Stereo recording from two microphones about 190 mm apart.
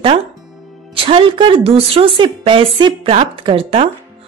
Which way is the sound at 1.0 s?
30° right (ahead or behind).